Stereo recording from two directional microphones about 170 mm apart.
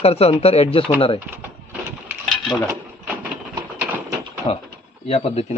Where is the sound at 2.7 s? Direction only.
10° right (ahead or behind).